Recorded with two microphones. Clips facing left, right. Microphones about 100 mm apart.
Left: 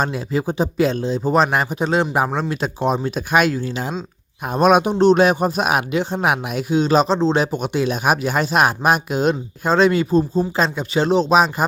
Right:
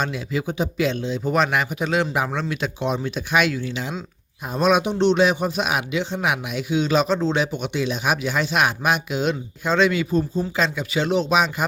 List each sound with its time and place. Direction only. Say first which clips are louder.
0.0 s speech: left 4 dB; 40° left (ahead or behind)
4.4 s speech: left 4 dB; 50° left (ahead or behind)